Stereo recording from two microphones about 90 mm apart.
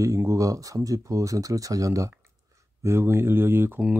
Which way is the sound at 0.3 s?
40° right (ahead or behind).